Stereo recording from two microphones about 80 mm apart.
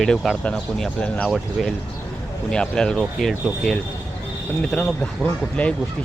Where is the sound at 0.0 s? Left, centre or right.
Centre.